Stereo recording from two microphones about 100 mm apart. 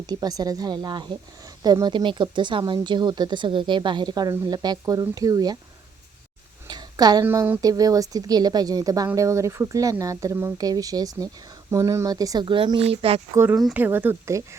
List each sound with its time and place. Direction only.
0.1 s speech: 40° right (ahead or behind)
6.7 s a sound: 40° right (ahead or behind)
7.6 s speech: 35° right (ahead or behind)
12.5 s speech: 55° right (ahead or behind); by 13.2 s 80° right
13.3 s speech: 25° right (ahead or behind)